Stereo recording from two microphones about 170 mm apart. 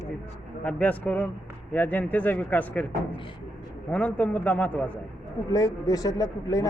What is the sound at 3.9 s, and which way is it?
Speech, 10° left (ahead or behind).